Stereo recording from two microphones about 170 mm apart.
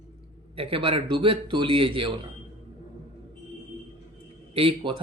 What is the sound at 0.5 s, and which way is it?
A man's voice, 30° right (ahead or behind).